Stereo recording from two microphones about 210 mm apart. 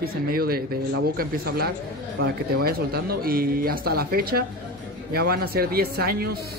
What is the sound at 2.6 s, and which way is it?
Speech, 45° right (ahead or behind).